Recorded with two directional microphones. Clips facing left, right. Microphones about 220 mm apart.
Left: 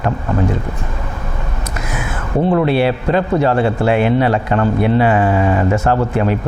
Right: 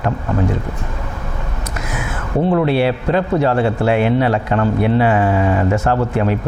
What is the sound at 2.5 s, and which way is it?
A man's voice, 20° left (ahead or behind).